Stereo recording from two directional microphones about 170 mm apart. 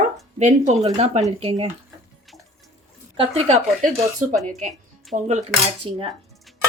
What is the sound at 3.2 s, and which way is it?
Cutlery, 35° right (ahead or behind).